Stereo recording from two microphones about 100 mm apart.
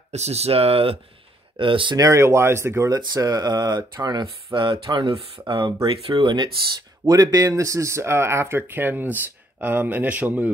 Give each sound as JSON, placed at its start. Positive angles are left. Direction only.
{"t": 0.1, "sound": "speech", "side_deg": -90}
{"t": 1.6, "sound": "speech", "side_deg": -60}
{"t": 2.0, "sound": "speech", "side_deg": -30}
{"t": 2.9, "sound": "speech", "side_deg": -40}
{"t": 4.5, "sound": "speech", "side_deg": -55}
{"t": 5.5, "sound": "speech", "side_deg": -50}
{"t": 5.9, "sound": "speech", "side_deg": -60}
{"t": 7.1, "sound": "speech", "side_deg": -40}